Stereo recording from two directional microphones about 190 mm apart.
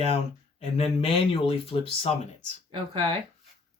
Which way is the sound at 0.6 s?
30° left (ahead or behind).